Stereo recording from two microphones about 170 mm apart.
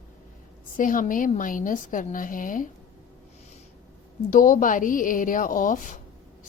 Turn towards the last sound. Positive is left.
turn(degrees=50)  # may be behind; listen again after turning